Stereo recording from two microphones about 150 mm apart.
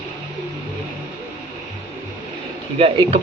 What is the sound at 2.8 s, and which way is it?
Speech, 40° right (ahead or behind).